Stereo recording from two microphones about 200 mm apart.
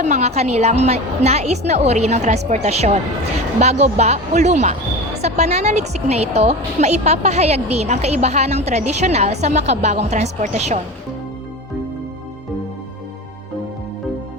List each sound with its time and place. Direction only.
0.0 s a woman's voice: 35° right (ahead or behind)